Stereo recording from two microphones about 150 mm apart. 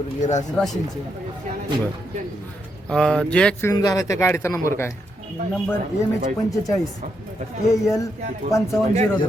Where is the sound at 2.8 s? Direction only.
5° left (ahead or behind).